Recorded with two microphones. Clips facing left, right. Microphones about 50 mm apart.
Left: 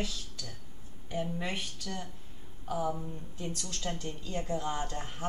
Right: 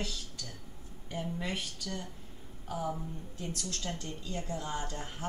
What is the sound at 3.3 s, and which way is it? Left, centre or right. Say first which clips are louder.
A woman's voice: even; centre.